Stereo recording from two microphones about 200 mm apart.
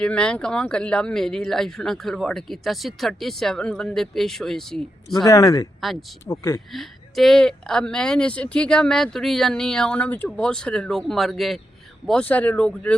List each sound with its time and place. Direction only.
0.0 s speech: 5° left (ahead or behind)
5.1 s speech: 15° left (ahead or behind)
5.8 s speech: centre (ahead or behind)
6.2 s speech: 15° left (ahead or behind)
6.7 s speech: centre (ahead or behind)